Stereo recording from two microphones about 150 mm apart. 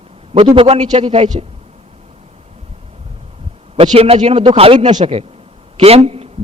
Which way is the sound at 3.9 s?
45° right (ahead or behind).